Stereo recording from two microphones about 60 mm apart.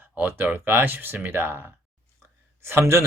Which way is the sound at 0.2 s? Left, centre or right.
Right.